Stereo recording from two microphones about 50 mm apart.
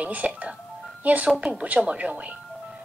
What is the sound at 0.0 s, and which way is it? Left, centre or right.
Speech, right.